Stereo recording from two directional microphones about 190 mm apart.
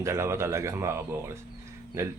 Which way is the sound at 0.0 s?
15° right (ahead or behind).